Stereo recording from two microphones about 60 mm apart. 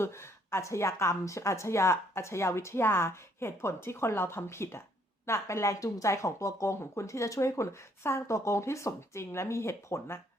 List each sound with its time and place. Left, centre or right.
0.0 s a woman's voice: left